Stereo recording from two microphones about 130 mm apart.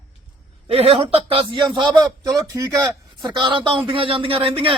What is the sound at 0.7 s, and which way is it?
A man's voice, 50° right (ahead or behind).